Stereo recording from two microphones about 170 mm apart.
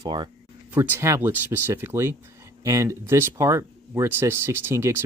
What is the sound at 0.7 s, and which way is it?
Speech, 10° right (ahead or behind).